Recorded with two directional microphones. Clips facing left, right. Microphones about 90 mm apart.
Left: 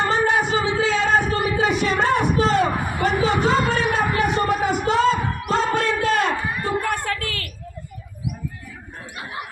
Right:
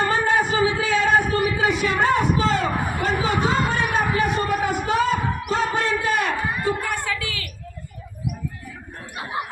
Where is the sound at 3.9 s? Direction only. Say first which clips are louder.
Left 1 dB; 90° left.